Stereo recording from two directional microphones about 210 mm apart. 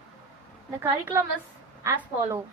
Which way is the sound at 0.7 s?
10° right (ahead or behind).